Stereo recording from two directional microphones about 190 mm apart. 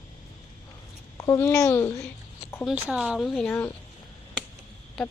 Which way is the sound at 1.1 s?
20° left (ahead or behind).